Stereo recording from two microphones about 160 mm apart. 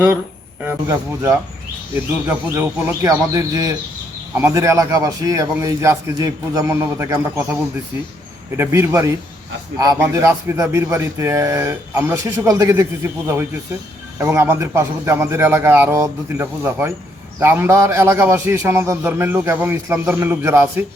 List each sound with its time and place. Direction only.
0.6 s a man's voice: 15° right (ahead or behind)
8.5 s a man's voice: 15° right (ahead or behind)